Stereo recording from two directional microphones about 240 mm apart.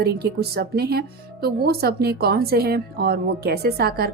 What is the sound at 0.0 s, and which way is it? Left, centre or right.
A woman's voice, right.